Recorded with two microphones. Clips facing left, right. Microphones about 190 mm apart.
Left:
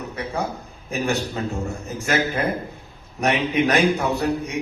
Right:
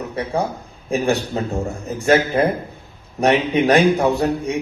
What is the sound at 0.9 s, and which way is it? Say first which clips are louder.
A man's voice: right 5 dB; 35° right (ahead or behind).